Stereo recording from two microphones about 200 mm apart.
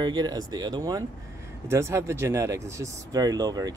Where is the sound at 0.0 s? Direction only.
20° right (ahead or behind).